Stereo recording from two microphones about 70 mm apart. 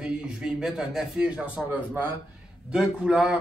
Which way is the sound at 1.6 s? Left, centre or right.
Right.